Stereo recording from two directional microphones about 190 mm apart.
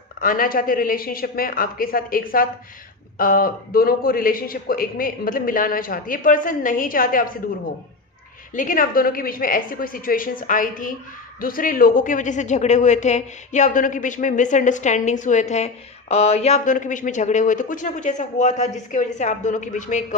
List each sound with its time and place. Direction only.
0.2 s a man's voice: 50° left (ahead or behind)
8.5 s a man's voice: 45° left (ahead or behind)